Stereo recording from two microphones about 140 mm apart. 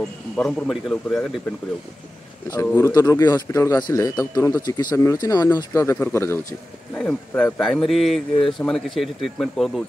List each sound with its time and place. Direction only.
0.4 s speech: 5° left (ahead or behind)
2.6 s speech: 15° left (ahead or behind)
2.9 s speech: 25° left (ahead or behind); by 9.8 s centre (ahead or behind)